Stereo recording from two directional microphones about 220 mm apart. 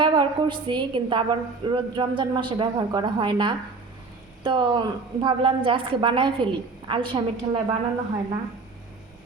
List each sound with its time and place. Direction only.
0.0 s a woman's voice: 20° right (ahead or behind)